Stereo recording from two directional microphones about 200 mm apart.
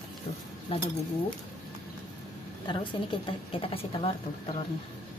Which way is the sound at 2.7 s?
25° left (ahead or behind).